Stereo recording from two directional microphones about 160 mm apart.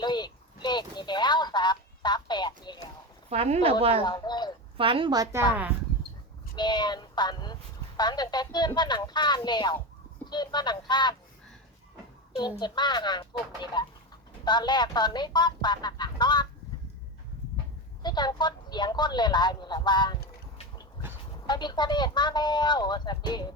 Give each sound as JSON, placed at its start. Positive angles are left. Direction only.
{"t": 0.0, "sound": "a sound", "side_deg": 25}
{"t": 3.2, "sound": "a woman's voice", "side_deg": -40}
{"t": 4.0, "sound": "a sound", "side_deg": 25}
{"t": 4.8, "sound": "a woman's voice", "side_deg": -35}
{"t": 5.5, "sound": "speech", "side_deg": -10}
{"t": 6.6, "sound": "speech", "side_deg": 25}
{"t": 12.4, "sound": "speech", "side_deg": 25}
{"t": 18.0, "sound": "speech", "side_deg": 25}
{"t": 21.4, "sound": "speech", "side_deg": 25}